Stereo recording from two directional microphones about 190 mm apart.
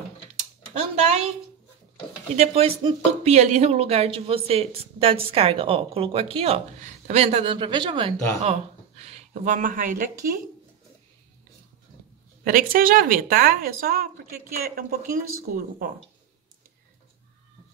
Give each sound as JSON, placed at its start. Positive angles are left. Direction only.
{"t": 0.7, "sound": "speech", "side_deg": -35}
{"t": 2.3, "sound": "speech", "side_deg": -35}
{"t": 12.4, "sound": "speech", "side_deg": -50}